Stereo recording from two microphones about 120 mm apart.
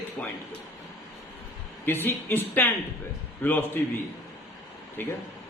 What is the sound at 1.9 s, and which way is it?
A man's voice, 15° left (ahead or behind).